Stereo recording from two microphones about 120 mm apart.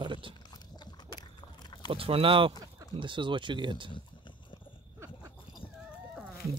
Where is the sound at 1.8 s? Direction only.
50° right (ahead or behind).